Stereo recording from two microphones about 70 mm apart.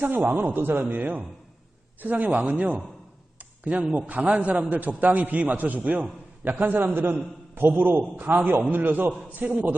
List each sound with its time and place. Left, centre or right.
0.3 s a man's voice: right
3.3 s a sound: right
3.9 s a man's voice: right